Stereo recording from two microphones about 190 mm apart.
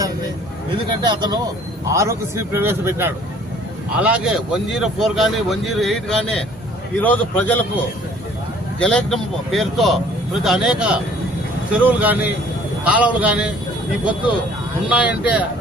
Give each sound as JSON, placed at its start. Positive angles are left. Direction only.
{"t": 0.9, "sound": "a man's voice", "side_deg": -25}